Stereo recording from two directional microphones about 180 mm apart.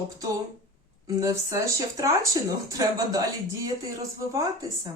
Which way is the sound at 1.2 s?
15° right (ahead or behind).